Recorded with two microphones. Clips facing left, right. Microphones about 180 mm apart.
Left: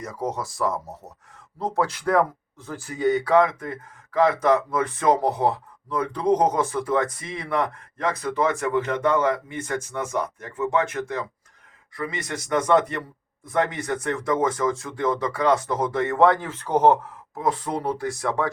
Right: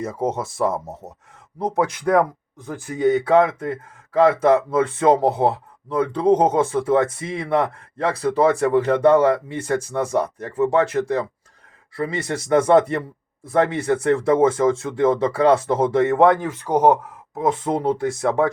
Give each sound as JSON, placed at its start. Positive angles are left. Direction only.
{"t": 0.0, "sound": "speech", "side_deg": -25}